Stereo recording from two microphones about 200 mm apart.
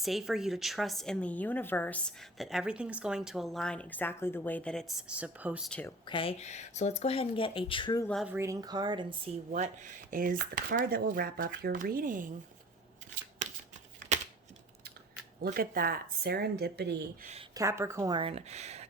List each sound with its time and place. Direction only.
0.0 s a woman's voice: centre (ahead or behind)
6.1 s speech: 25° left (ahead or behind)
8.0 s a woman's voice: centre (ahead or behind)
8.3 s speech: 15° right (ahead or behind)
10.1 s speech: 45° right (ahead or behind)
14.1 s computer keyboard: 35° right (ahead or behind)
15.4 s speech: 45° right (ahead or behind)
17.5 s speech: 15° right (ahead or behind); by 18.9 s 35° right (ahead or behind)